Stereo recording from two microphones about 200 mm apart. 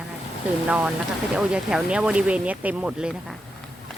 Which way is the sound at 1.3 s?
5° right (ahead or behind).